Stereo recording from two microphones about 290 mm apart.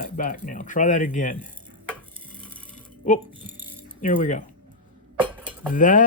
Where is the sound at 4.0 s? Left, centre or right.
Left.